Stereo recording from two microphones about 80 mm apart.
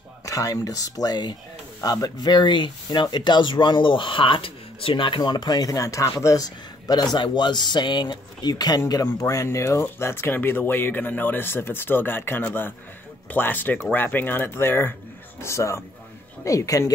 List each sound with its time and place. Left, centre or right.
0.2 s speech: left
9.0 s speech: left